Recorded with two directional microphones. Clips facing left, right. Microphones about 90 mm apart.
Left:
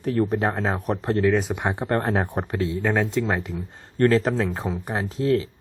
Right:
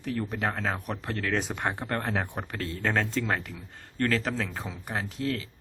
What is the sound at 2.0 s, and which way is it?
Speech, 35° left (ahead or behind).